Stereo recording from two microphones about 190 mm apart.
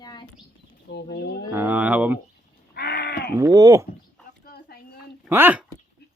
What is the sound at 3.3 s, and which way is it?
Speech, 20° right (ahead or behind).